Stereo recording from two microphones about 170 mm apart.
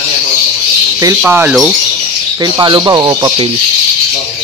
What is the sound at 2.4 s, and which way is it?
Speech, 25° right (ahead or behind).